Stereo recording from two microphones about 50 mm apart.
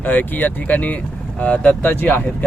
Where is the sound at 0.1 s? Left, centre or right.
Left.